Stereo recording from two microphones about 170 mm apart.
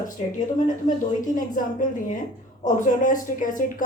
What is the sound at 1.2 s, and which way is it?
Speech, 50° left (ahead or behind).